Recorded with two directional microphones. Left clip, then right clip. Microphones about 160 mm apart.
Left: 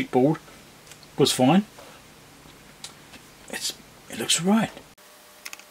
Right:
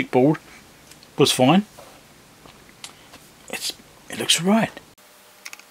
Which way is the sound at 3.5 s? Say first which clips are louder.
Right 2 dB; 20° right (ahead or behind).